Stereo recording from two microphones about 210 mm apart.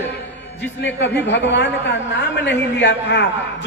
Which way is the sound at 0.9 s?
55° left (ahead or behind).